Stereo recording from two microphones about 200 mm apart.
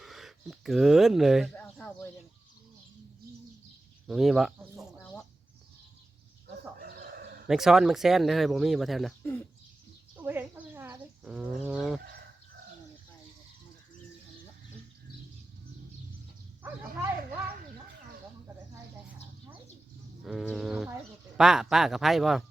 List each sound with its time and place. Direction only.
0.0 s speech: centre (ahead or behind)
1.5 s a sound: 10° left (ahead or behind)
4.0 s speech: centre (ahead or behind)
6.7 s chicken: 50° right (ahead or behind)
7.4 s speech: centre (ahead or behind)
9.2 s speech: 10° left (ahead or behind)
10.2 s a sound: 10° right (ahead or behind)
11.6 s speech: centre (ahead or behind)
20.2 s speech: centre (ahead or behind)